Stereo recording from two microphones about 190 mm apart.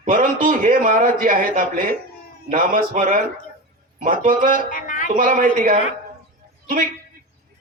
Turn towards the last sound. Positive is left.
turn(degrees=-45)  # may be behind; listen again after turning